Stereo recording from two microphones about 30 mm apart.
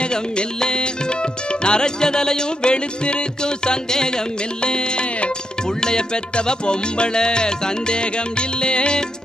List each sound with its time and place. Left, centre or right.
0.0 s music: left